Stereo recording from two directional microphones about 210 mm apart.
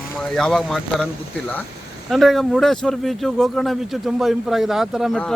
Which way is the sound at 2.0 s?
Centre (ahead or behind).